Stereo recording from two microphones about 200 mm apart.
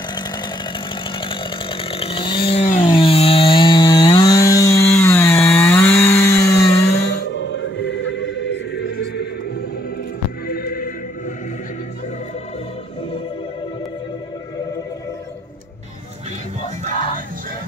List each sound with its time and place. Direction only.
1.2 s chainsaw: 25° left (ahead or behind)
7.2 s choir: 65° left (ahead or behind)
10.5 s neigh: 45° left (ahead or behind)